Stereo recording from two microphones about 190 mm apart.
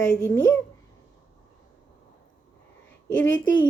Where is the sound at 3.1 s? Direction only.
5° left (ahead or behind).